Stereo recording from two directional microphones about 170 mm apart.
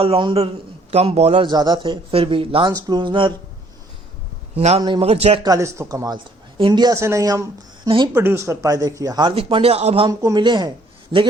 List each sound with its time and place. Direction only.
0.0 s a man's voice: 30° right (ahead or behind)
1.5 s speech: 25° right (ahead or behind)
4.5 s a man's voice: 35° right (ahead or behind)
5.5 s speech: 15° right (ahead or behind)
7.9 s speech: 30° right (ahead or behind)
8.1 s speech: 15° right (ahead or behind); by 10.1 s 35° right (ahead or behind)
10.1 s speech: 20° right (ahead or behind)